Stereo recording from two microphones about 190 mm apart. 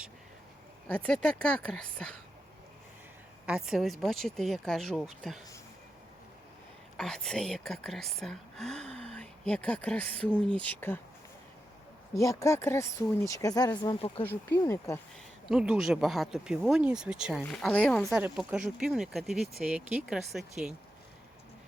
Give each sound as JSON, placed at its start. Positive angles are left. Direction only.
{"t": 0.9, "sound": "speech", "side_deg": 5}
{"t": 3.4, "sound": "speech", "side_deg": -5}
{"t": 6.9, "sound": "speech", "side_deg": 5}
{"t": 12.2, "sound": "speech", "side_deg": 15}
{"t": 15.4, "sound": "speech", "side_deg": -5}